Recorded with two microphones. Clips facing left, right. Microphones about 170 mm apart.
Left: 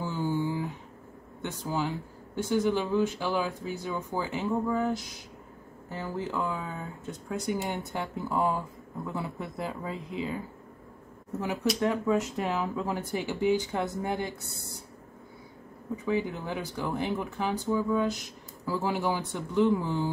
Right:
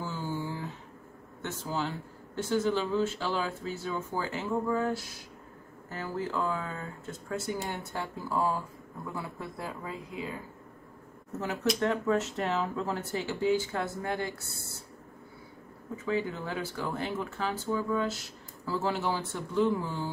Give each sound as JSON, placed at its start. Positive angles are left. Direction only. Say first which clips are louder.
{"t": 0.0, "sound": "a sound", "louder": "left 5 dB", "side_deg": 20}
{"t": 1.4, "sound": "speech", "louder": "left 2 dB", "side_deg": 15}
{"t": 11.8, "sound": "speech", "louder": "left 2 dB", "side_deg": 10}
{"t": 16.1, "sound": "speech", "louder": "left 1 dB", "side_deg": 15}